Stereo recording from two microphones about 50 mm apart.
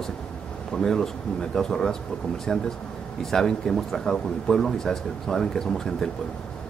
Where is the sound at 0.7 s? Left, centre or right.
Centre.